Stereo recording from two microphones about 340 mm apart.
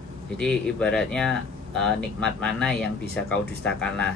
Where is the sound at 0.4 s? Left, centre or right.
Centre.